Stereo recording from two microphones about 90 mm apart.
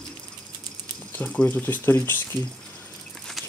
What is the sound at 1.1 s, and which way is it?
Speech, 15° left (ahead or behind).